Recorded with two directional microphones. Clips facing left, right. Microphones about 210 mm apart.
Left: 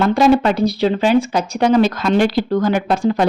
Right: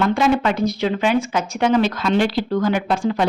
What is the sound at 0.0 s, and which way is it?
Speech, 40° left (ahead or behind).